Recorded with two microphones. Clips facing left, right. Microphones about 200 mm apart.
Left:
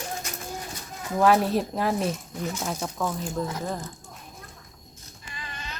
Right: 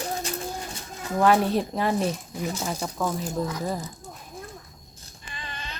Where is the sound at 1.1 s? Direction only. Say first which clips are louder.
Even; centre (ahead or behind).